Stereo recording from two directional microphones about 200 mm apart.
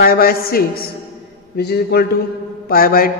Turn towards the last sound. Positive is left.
turn(degrees=45)  # may be behind; listen again after turning